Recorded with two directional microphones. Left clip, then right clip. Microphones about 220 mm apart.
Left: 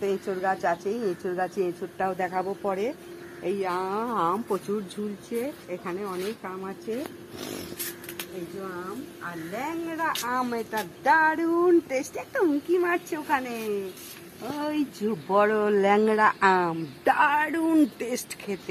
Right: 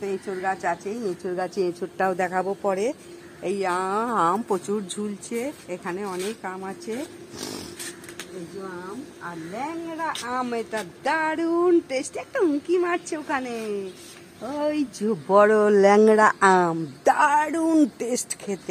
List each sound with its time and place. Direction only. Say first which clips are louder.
0.0 s a woman's voice: even; centre (ahead or behind)
1.2 s speech: right 2 dB; 35° right (ahead or behind)
2.0 s speech: right 4 dB; 50° right (ahead or behind)
9.6 s speech: even; 50° right (ahead or behind)